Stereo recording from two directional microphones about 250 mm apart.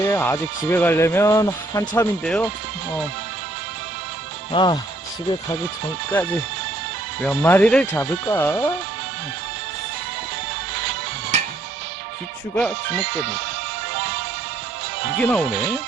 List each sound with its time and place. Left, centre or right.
0.0 s speech: centre
2.2 s speech: centre
4.5 s speech: centre
6.1 s speech: centre
11.3 s music: right
15.2 s speech: centre